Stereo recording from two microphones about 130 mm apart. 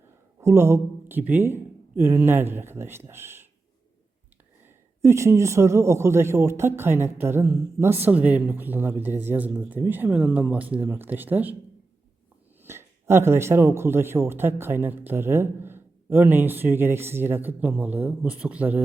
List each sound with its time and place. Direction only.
0.3 s a man's voice: 20° right (ahead or behind)
5.0 s speech: 20° right (ahead or behind)
12.6 s speech: 20° right (ahead or behind)